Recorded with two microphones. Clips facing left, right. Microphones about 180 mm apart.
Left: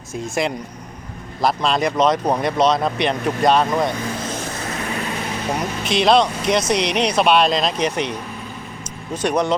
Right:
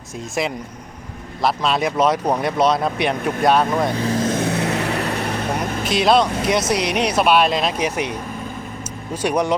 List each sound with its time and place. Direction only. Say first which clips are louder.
0.4 s speech: even; centre (ahead or behind)
4.0 s speech: right 6 dB; 40° right (ahead or behind)
4.3 s vehicle: right 7 dB; 60° right (ahead or behind)
5.9 s speech: left 1 dB; 5° right (ahead or behind)
9.2 s speech: even; 10° right (ahead or behind)